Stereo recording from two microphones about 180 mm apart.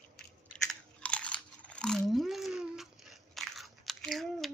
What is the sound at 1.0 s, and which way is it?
Crunch, 5° left (ahead or behind).